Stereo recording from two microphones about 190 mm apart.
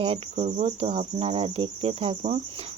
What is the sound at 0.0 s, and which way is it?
Cricket, 35° right (ahead or behind).